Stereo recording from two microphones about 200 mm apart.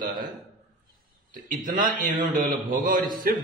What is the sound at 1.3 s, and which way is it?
A man's voice, 40° right (ahead or behind).